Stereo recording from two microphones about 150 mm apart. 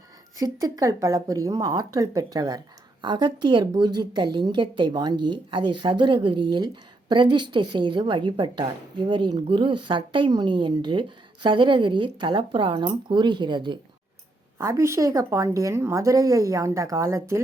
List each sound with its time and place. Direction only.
0.3 s a woman's voice: 25° right (ahead or behind)
14.6 s a woman's voice: 20° right (ahead or behind)